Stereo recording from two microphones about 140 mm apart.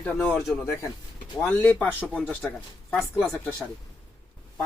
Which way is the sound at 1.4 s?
10° left (ahead or behind).